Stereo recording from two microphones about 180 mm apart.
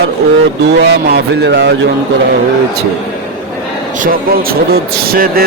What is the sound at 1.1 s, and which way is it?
Speech, 70° right (ahead or behind).